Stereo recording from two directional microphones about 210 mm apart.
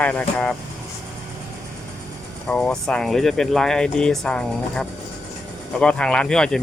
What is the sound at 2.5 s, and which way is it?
Speech, 5° left (ahead or behind).